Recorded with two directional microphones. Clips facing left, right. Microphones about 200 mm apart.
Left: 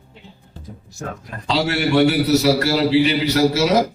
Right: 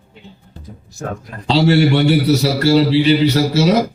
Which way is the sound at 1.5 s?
30° right (ahead or behind).